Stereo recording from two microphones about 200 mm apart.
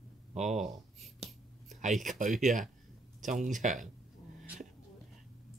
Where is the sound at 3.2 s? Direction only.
40° right (ahead or behind).